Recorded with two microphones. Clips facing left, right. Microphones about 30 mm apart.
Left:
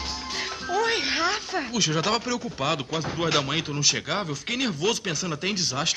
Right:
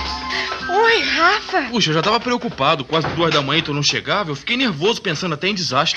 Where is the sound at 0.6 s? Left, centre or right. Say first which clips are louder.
Right 10 dB; right.